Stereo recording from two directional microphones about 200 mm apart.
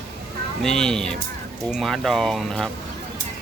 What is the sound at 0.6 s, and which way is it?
Speech, centre (ahead or behind).